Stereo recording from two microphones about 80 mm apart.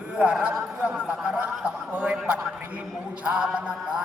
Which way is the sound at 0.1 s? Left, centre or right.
Centre.